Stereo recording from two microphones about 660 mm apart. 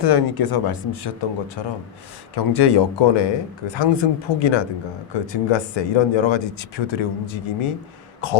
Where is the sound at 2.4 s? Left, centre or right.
Left.